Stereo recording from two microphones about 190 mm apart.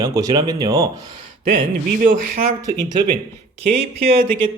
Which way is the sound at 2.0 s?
45° right (ahead or behind).